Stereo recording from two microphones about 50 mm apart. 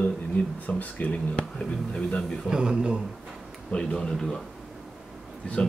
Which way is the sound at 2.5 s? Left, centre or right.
Centre.